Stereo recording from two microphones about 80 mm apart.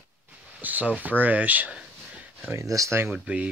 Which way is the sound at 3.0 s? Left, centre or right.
Centre.